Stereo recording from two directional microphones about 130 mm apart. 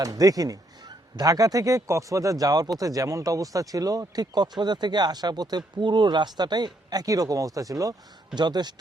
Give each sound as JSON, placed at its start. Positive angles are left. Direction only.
{"t": 0.0, "sound": "speech", "side_deg": -30}